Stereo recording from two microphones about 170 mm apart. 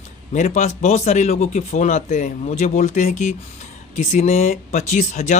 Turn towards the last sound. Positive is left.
turn(degrees=45)  # may be behind; listen again after turning